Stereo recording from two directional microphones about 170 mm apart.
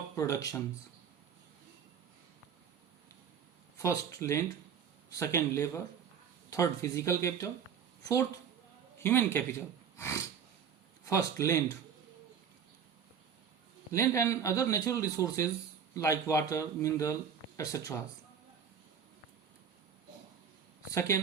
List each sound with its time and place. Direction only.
0.2 s a man's voice: 20° left (ahead or behind)
3.8 s a man's voice: 15° left (ahead or behind)
13.9 s a man's voice: 20° left (ahead or behind)
20.9 s speech: 15° left (ahead or behind)